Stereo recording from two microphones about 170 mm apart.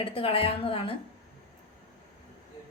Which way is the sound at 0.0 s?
35° left (ahead or behind).